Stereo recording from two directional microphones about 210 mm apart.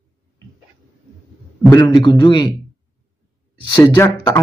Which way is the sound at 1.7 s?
20° left (ahead or behind).